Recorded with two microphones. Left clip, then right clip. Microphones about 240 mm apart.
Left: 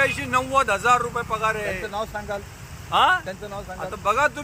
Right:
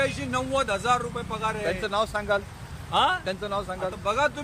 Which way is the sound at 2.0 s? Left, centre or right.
Centre.